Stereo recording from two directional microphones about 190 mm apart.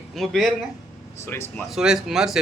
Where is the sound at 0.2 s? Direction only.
Centre (ahead or behind).